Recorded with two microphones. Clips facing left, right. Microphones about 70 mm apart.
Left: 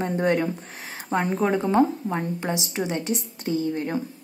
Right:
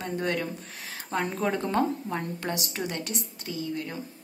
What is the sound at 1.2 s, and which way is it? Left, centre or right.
A woman's voice, centre.